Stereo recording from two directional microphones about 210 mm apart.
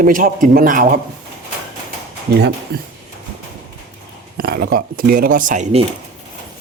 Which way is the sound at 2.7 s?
50° right (ahead or behind).